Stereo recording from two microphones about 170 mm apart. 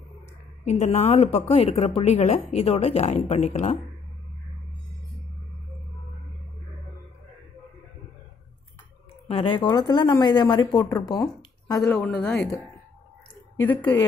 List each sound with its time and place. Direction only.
0.7 s a woman's voice: 40° left (ahead or behind)
9.3 s speech: 30° left (ahead or behind)
11.8 s a woman's voice: 5° left (ahead or behind)
13.6 s a woman's voice: 10° left (ahead or behind)